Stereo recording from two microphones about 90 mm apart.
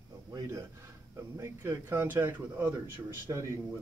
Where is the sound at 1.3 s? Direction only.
35° right (ahead or behind).